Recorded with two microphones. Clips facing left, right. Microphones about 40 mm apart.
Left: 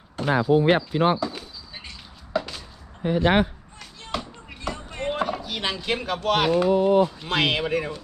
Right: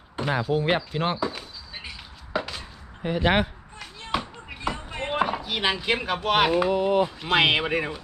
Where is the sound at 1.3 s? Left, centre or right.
Centre.